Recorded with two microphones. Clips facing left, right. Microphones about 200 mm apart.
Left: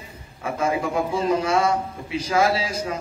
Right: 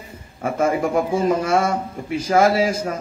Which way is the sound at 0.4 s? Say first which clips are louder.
Right 4 dB; 50° right (ahead or behind).